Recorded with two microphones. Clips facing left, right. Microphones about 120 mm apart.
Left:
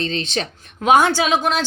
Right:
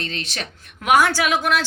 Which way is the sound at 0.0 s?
30° left (ahead or behind).